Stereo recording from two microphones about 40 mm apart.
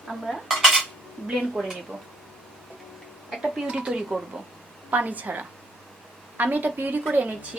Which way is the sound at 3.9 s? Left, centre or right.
Centre.